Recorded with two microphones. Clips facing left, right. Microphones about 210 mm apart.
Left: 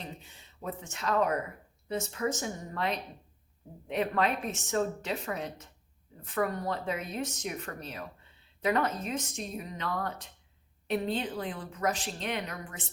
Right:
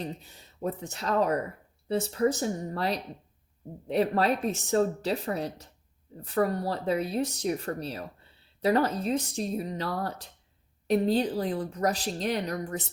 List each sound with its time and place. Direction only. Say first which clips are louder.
0.0 s a woman's voice: right 7 dB; 40° right (ahead or behind)